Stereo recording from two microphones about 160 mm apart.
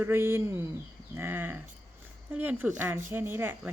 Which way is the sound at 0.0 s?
15° right (ahead or behind).